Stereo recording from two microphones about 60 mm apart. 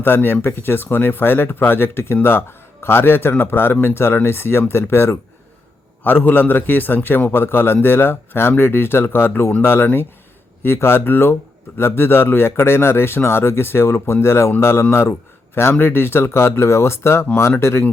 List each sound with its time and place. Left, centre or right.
0.0 s a man's voice: left
6.0 s a man's voice: left